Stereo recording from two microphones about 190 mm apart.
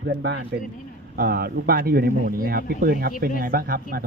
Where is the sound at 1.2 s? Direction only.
50° right (ahead or behind).